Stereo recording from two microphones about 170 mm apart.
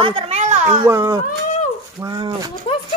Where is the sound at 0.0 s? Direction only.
35° right (ahead or behind).